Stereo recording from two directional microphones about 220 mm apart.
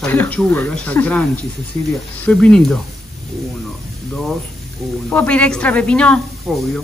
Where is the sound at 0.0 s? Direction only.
10° left (ahead or behind).